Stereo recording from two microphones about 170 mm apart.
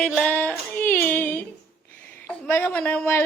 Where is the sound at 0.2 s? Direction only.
10° left (ahead or behind).